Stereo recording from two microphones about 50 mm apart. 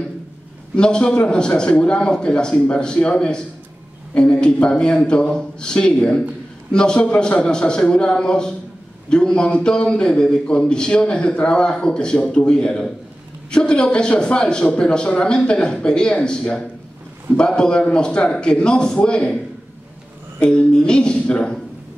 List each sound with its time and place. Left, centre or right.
0.7 s a man's voice: centre
20.3 s a man's voice: centre